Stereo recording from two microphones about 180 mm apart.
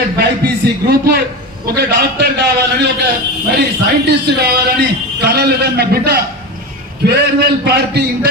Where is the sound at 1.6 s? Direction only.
65° right (ahead or behind).